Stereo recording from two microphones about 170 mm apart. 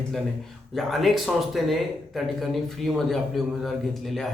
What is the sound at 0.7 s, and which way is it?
A man's voice, centre (ahead or behind).